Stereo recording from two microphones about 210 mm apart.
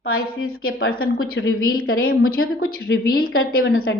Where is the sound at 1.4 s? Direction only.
60° left (ahead or behind).